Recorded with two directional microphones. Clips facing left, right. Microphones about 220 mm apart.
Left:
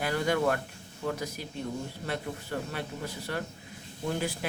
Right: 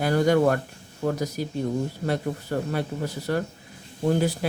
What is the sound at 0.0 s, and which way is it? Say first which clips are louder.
Speech: right 8 dB; 40° right (ahead or behind).